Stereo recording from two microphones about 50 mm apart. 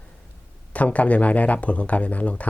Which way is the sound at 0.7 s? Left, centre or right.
Left.